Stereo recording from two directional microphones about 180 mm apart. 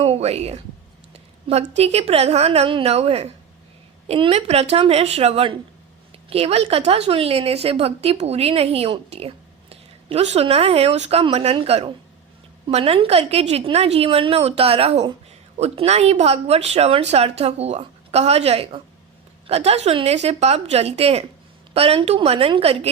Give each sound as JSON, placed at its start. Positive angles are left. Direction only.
{"t": 0.0, "sound": "speech", "side_deg": -35}
{"t": 1.1, "sound": "a sound", "side_deg": -35}
{"t": 1.7, "sound": "a woman's voice", "side_deg": -35}